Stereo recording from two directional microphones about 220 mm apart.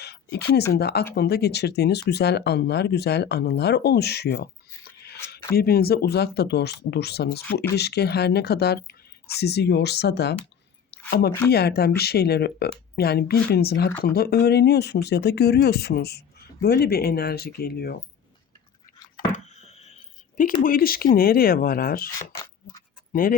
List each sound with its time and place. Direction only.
0.0 s speech: 50° left (ahead or behind)
5.5 s speech: 45° left (ahead or behind)
10.9 s a sound: 45° left (ahead or behind)
11.5 s speech: 45° left (ahead or behind)
19.3 s a sound: 30° left (ahead or behind)
20.7 s speech: 40° left (ahead or behind)